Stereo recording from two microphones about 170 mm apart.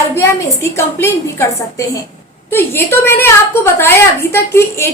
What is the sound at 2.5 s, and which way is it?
A woman's voice, 10° left (ahead or behind).